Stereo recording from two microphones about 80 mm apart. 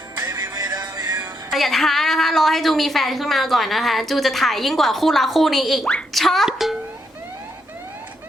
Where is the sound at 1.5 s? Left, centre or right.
Centre.